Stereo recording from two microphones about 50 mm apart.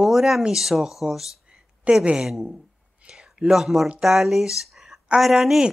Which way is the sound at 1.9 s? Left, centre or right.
Right.